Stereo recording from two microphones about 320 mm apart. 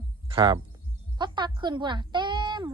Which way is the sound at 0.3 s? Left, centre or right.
Centre.